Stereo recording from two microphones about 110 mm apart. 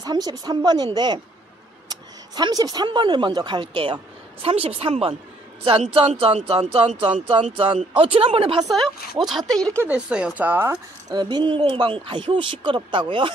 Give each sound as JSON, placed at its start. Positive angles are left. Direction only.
{"t": 0.0, "sound": "a woman's voice", "side_deg": -35}
{"t": 3.7, "sound": "speech", "side_deg": -55}
{"t": 8.6, "sound": "speech", "side_deg": 0}
{"t": 11.1, "sound": "speech", "side_deg": -40}